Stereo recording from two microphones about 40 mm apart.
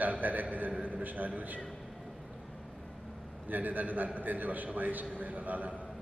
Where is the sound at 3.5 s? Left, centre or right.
Right.